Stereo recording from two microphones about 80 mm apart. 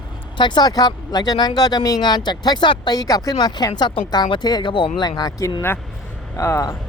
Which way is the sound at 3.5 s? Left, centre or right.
Left.